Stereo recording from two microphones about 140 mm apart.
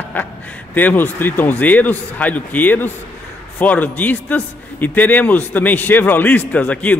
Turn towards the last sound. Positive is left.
turn(degrees=10)  # may be behind; listen again after turning